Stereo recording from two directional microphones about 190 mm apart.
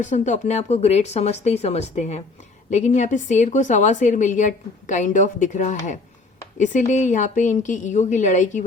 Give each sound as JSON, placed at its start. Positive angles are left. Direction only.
{"t": 0.0, "sound": "a woman's voice", "side_deg": 40}